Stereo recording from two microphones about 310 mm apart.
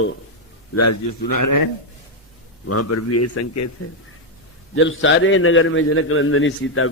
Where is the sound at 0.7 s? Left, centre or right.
Left.